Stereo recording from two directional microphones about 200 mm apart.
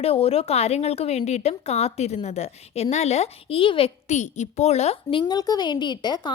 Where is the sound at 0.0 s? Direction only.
30° left (ahead or behind).